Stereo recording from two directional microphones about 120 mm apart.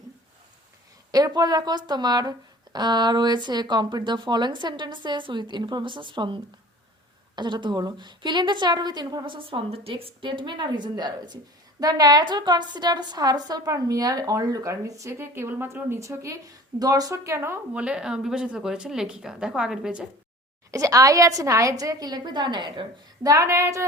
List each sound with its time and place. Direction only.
1.1 s a woman's voice: 35° right (ahead or behind)
17.7 s speech: 10° right (ahead or behind)
20.7 s a woman's voice: 30° right (ahead or behind)
23.3 s a woman's voice: 25° right (ahead or behind)